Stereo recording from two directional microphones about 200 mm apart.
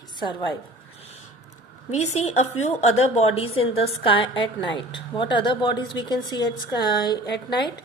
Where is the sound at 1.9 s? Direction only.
35° left (ahead or behind).